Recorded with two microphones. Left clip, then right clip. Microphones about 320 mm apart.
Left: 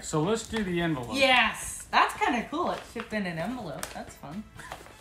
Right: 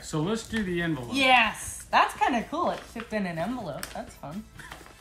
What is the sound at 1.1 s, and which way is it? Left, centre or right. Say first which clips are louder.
A woman's voice: right 2 dB; centre.